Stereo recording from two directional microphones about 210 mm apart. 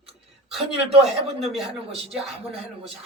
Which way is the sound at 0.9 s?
30° right (ahead or behind).